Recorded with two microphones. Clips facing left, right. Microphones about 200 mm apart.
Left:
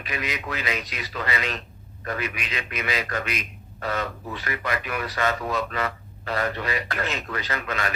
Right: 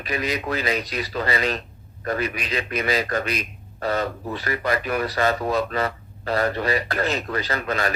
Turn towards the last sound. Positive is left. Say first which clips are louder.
# right 4 dB
turn(degrees=-35)  # may be behind; listen again after turning